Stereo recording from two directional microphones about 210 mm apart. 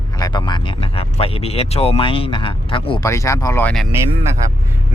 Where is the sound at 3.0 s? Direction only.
15° left (ahead or behind).